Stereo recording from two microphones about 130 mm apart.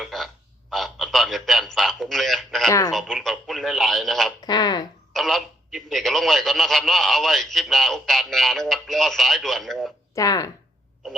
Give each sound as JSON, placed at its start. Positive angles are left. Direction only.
{"t": 0.0, "sound": "a sound", "side_deg": 0}
{"t": 0.7, "sound": "a man's voice", "side_deg": 5}
{"t": 4.4, "sound": "speech", "side_deg": 30}
{"t": 5.1, "sound": "speech", "side_deg": 0}
{"t": 10.2, "sound": "speech", "side_deg": 25}